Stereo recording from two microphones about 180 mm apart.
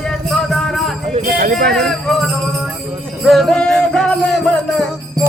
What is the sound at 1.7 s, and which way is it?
Music, 5° left (ahead or behind).